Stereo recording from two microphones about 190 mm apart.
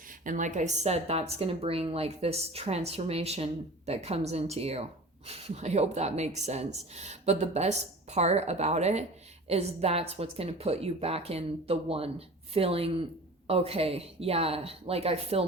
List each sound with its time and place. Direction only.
0.3 s a woman's voice: 40° right (ahead or behind)